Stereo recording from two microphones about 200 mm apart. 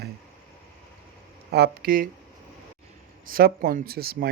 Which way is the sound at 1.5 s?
50° right (ahead or behind).